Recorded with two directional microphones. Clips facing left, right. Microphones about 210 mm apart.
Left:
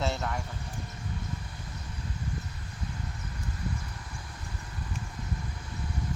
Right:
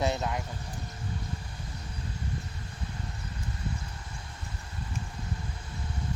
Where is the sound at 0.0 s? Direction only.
20° right (ahead or behind).